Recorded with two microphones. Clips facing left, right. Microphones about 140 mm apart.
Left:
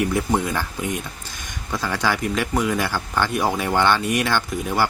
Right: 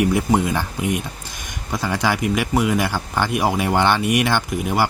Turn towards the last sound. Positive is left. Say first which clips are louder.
# right 2 dB
turn(degrees=-15)  # may be behind; listen again after turning